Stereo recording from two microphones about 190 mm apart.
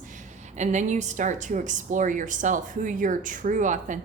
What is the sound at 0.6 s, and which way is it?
A woman's voice, 40° right (ahead or behind).